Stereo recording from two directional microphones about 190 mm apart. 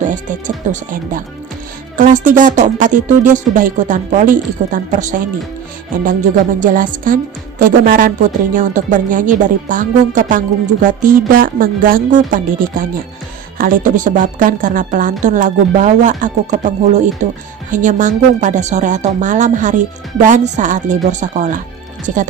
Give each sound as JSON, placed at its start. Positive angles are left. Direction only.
{"t": 0.1, "sound": "a woman's voice", "side_deg": -40}
{"t": 6.6, "sound": "a woman's voice", "side_deg": -45}